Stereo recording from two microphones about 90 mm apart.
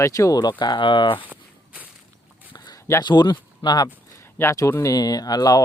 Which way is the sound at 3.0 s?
55° left (ahead or behind).